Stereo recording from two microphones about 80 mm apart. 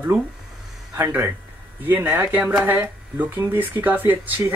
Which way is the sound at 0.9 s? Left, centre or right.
Right.